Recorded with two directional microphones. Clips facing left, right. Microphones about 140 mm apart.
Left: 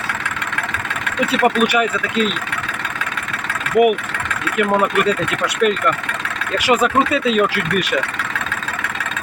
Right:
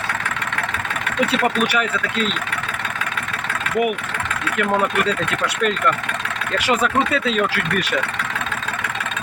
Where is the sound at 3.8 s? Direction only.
10° left (ahead or behind).